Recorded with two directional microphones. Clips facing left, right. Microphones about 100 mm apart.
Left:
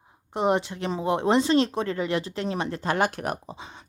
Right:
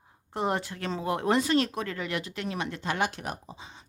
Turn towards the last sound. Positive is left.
turn(degrees=65)  # may be behind; listen again after turning